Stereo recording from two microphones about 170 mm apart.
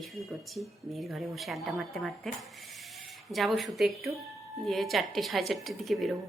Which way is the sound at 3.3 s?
Centre (ahead or behind).